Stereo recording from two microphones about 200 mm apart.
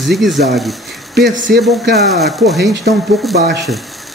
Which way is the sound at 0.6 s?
Centre (ahead or behind).